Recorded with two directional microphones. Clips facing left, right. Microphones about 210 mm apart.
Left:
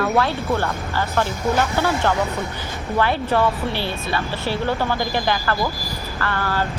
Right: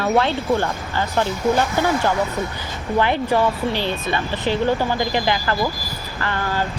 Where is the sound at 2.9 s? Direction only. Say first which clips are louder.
Right 1 dB; 15° right (ahead or behind).